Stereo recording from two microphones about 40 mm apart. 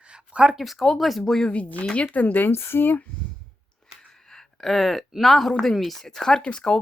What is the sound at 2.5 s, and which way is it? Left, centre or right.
Speech, left.